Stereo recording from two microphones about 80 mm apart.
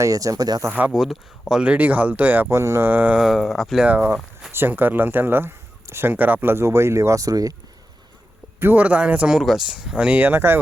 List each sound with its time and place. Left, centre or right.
0.0 s speech: right
0.7 s speech: centre
0.9 s speech: centre; by 2.5 s right
2.5 s speech: right
2.9 s speech: right
3.2 s speech: centre
3.8 s speech: right
8.5 s speech: right